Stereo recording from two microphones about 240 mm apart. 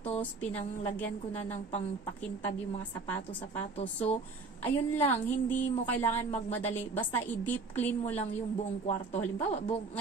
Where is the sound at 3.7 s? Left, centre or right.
Left.